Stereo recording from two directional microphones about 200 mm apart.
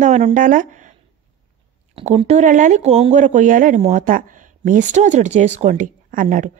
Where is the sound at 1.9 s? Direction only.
30° right (ahead or behind).